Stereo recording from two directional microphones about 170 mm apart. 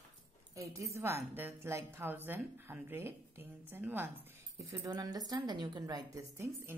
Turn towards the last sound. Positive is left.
turn(degrees=-15)  # may be behind; listen again after turning